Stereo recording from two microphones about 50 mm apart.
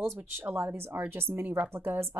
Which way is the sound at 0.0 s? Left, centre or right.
Right.